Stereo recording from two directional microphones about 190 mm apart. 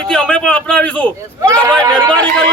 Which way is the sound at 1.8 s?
20° right (ahead or behind).